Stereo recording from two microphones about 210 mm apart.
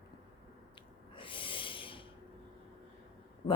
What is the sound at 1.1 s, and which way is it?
Snort, 25° left (ahead or behind).